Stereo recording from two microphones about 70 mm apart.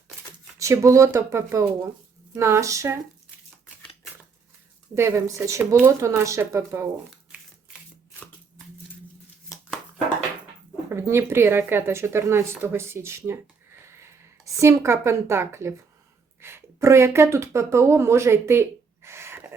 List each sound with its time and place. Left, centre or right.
0.6 s speech: right
4.9 s speech: right
10.8 s speech: right
12.6 s a sound: right
14.4 s speech: right